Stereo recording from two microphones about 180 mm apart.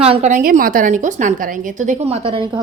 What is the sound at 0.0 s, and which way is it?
A woman's voice, 35° right (ahead or behind).